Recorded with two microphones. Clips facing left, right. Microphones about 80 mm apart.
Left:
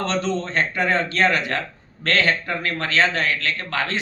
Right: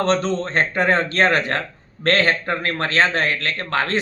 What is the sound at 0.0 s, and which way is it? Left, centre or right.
A man's voice, right.